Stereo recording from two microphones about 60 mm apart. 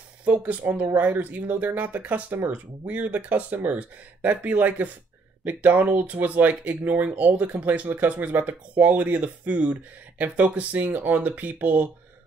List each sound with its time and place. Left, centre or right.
0.2 s speech: right